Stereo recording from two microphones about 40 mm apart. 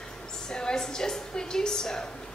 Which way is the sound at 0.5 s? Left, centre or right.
Centre.